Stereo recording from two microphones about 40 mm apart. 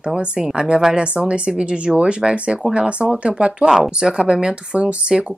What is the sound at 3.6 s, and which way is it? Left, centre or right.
Speech, centre.